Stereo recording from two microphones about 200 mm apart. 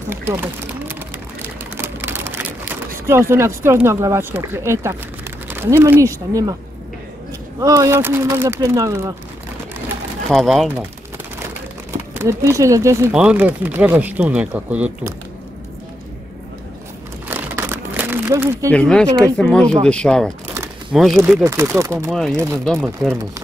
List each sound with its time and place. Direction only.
0.1 s a sound: 10° right (ahead or behind)
5.5 s speech: 10° right (ahead or behind)
7.6 s speech: 15° right (ahead or behind)
10.3 s speech: centre (ahead or behind)
12.2 s speech: 15° right (ahead or behind)
17.3 s a sound: 10° right (ahead or behind)
18.7 s speech: 5° left (ahead or behind)
21.4 s speech: 15° right (ahead or behind)
22.1 s speech: centre (ahead or behind)